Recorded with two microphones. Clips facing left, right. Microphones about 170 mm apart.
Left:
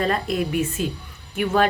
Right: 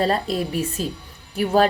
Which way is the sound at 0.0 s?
35° right (ahead or behind).